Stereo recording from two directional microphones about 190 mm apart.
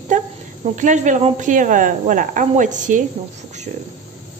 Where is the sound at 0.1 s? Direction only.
40° right (ahead or behind).